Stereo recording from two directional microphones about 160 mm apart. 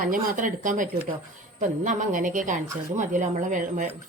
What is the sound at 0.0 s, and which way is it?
A woman's voice, 55° right (ahead or behind).